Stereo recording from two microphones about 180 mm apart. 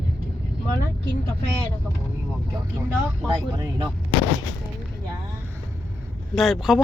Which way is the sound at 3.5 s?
25° right (ahead or behind).